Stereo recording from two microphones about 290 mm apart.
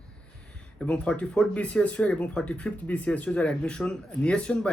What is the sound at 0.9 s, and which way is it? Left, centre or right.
Speech, centre.